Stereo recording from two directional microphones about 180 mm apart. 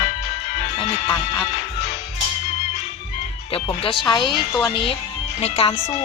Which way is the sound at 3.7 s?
30° left (ahead or behind).